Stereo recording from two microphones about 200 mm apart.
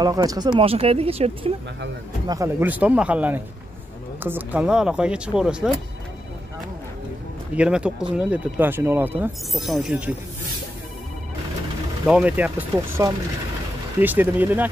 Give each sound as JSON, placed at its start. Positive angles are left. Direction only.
{"t": 0.0, "sound": "speech", "side_deg": -20}
{"t": 2.2, "sound": "speech", "side_deg": -15}
{"t": 7.5, "sound": "speech", "side_deg": -5}
{"t": 12.1, "sound": "speech", "side_deg": -5}